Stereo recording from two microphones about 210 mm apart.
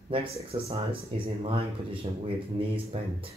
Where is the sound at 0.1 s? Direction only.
25° right (ahead or behind).